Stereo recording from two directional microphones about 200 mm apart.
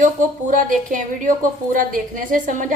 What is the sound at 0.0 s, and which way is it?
Speech, 40° right (ahead or behind).